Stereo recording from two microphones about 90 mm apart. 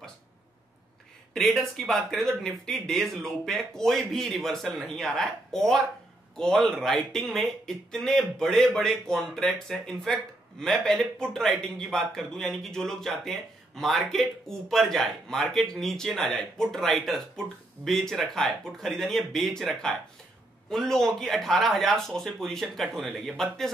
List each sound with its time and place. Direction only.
1.3 s speech: 5° left (ahead or behind)